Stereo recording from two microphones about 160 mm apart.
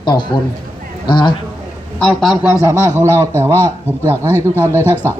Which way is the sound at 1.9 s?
5° left (ahead or behind).